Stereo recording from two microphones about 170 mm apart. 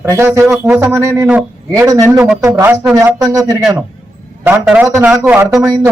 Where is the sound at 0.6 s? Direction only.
15° right (ahead or behind).